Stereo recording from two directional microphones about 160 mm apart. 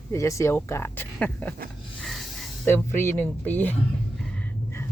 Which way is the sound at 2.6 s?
15° left (ahead or behind).